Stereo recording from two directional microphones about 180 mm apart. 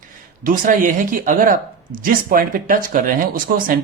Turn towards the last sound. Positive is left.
turn(degrees=-50)  # may be behind; listen again after turning